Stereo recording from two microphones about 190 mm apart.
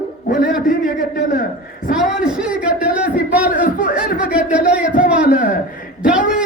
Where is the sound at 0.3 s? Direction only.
55° left (ahead or behind).